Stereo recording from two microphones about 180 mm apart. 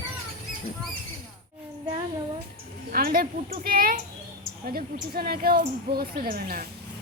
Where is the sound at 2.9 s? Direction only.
55° right (ahead or behind).